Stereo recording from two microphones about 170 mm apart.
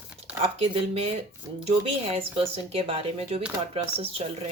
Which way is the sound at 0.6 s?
35° right (ahead or behind).